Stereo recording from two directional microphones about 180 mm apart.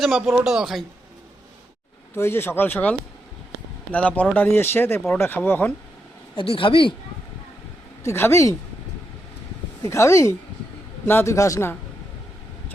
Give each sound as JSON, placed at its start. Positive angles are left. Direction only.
{"t": 0.0, "sound": "speech", "side_deg": 0}
{"t": 2.1, "sound": "speech", "side_deg": 15}
{"t": 3.9, "sound": "speech", "side_deg": 10}
{"t": 6.3, "sound": "speech", "side_deg": 30}
{"t": 8.0, "sound": "speech", "side_deg": 15}
{"t": 9.8, "sound": "speech", "side_deg": 15}